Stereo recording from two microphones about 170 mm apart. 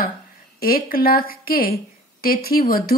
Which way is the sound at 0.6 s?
60° left (ahead or behind).